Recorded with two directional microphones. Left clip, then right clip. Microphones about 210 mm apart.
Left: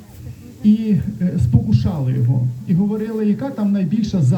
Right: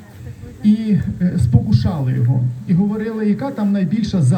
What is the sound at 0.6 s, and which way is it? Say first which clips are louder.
A man's voice: even; 10° right (ahead or behind).